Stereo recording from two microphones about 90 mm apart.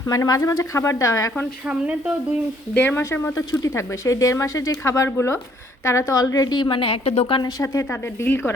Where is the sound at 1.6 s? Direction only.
10° right (ahead or behind).